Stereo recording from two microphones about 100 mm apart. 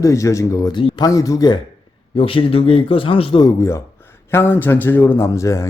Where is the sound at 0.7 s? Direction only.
50° left (ahead or behind).